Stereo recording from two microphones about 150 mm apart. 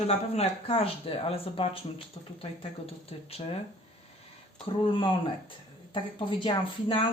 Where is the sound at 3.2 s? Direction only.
40° left (ahead or behind).